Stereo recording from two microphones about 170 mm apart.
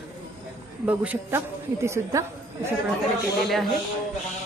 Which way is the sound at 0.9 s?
10° right (ahead or behind).